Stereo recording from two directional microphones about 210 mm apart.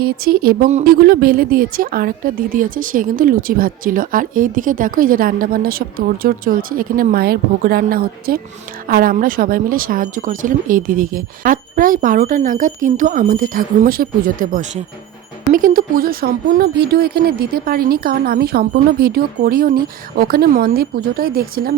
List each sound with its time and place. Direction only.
0.0 s speech: 45° right (ahead or behind)